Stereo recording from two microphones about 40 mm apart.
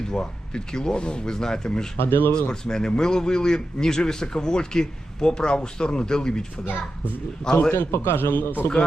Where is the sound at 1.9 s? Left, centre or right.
Left.